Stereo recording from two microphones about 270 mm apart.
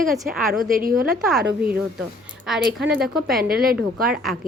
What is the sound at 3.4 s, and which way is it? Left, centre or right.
Speech, right.